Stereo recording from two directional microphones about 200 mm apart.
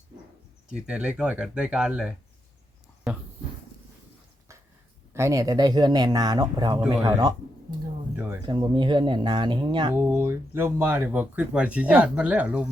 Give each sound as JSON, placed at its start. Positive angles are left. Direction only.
{"t": 0.7, "sound": "speech", "side_deg": -5}
{"t": 5.1, "sound": "speech", "side_deg": -15}
{"t": 8.4, "sound": "speech", "side_deg": -25}
{"t": 9.9, "sound": "speech", "side_deg": -10}